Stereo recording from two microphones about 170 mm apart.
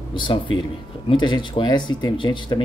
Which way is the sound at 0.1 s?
30° left (ahead or behind).